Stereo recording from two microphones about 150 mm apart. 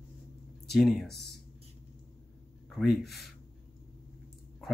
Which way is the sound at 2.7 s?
Centre (ahead or behind).